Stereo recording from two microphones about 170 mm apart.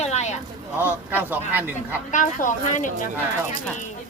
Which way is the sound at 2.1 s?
50° left (ahead or behind).